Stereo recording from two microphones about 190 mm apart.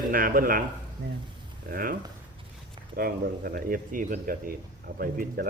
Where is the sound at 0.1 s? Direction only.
50° right (ahead or behind).